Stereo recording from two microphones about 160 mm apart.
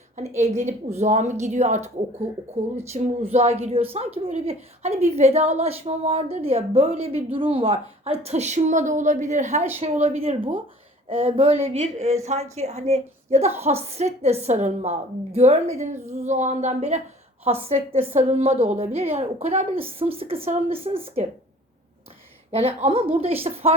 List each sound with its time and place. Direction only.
0.3 s a woman's voice: 45° right (ahead or behind)
22.5 s a woman's voice: 40° right (ahead or behind)